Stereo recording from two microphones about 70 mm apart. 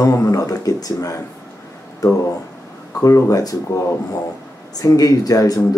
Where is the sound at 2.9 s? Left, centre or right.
Left.